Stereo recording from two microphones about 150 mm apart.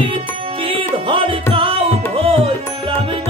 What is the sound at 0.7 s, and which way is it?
Music, 35° right (ahead or behind).